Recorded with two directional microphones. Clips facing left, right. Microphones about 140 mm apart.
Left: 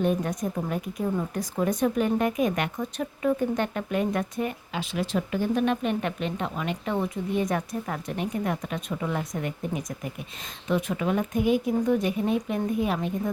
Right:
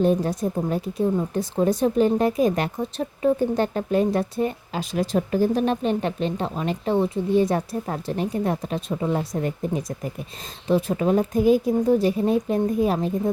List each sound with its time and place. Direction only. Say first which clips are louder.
0.0 s a woman's voice: right 5 dB; 30° right (ahead or behind)